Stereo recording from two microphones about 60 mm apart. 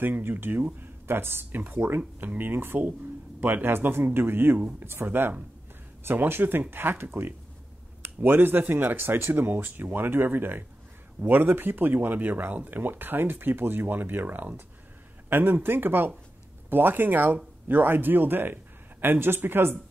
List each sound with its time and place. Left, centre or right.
0.0 s a man's voice: right